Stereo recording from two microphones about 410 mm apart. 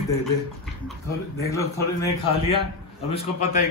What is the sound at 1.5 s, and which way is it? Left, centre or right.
A man's voice, centre.